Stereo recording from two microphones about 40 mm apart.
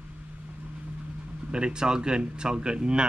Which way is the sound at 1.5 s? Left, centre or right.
Right.